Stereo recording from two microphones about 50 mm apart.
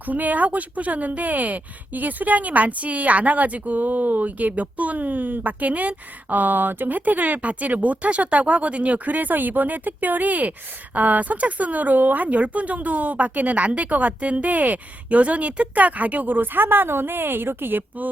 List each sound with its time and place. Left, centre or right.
0.0 s speech: right